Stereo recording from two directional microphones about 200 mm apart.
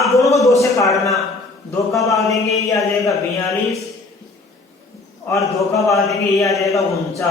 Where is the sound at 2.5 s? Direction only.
15° left (ahead or behind).